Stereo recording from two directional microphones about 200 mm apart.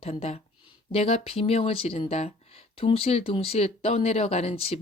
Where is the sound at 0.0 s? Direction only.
30° left (ahead or behind).